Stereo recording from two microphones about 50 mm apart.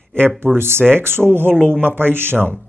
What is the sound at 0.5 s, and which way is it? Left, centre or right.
Speech, right.